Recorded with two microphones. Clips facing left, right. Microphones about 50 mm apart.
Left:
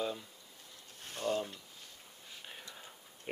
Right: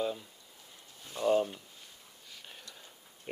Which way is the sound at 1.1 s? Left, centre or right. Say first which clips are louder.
Right 7 dB; right.